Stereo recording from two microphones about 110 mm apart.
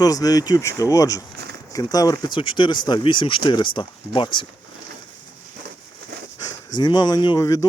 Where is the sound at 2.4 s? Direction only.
50° left (ahead or behind).